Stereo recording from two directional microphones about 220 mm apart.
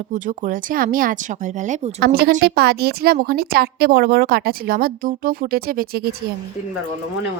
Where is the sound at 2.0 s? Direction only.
45° right (ahead or behind).